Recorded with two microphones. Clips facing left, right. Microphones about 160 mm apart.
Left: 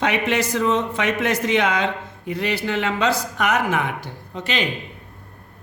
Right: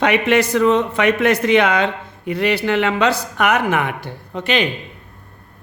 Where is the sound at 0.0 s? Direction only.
60° right (ahead or behind).